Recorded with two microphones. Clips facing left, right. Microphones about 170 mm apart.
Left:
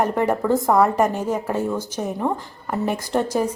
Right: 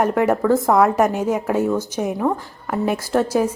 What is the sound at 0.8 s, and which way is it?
A woman's voice, 10° right (ahead or behind).